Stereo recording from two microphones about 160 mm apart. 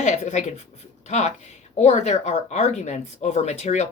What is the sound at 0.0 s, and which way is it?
Speech, 45° left (ahead or behind).